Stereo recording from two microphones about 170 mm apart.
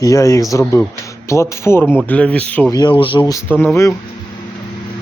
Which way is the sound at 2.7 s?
25° left (ahead or behind).